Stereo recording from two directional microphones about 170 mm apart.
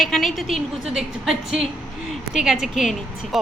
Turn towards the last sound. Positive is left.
turn(degrees=0)  # may be behind; listen again after turning